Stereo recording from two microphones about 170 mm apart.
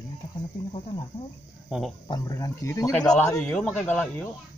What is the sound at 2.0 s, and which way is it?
Speech, 20° left (ahead or behind).